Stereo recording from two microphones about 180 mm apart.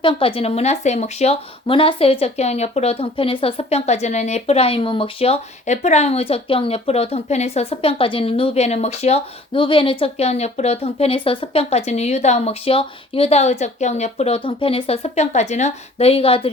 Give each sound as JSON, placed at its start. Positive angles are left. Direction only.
{"t": 0.0, "sound": "speech", "side_deg": 30}